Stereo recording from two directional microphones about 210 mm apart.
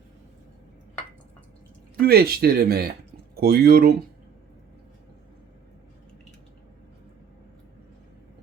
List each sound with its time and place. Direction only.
2.0 s speech: 45° right (ahead or behind)